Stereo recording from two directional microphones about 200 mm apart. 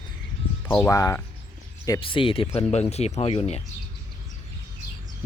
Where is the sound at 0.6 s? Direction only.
10° left (ahead or behind); by 3.6 s 30° left (ahead or behind).